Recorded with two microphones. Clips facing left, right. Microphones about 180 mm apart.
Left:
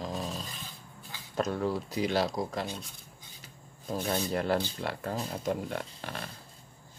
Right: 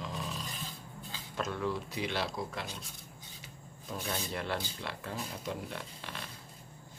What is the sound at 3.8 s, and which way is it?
Speech, 40° left (ahead or behind).